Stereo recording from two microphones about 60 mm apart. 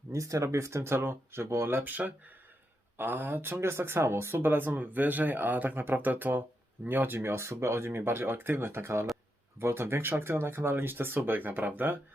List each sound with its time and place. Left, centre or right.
0.1 s speech: right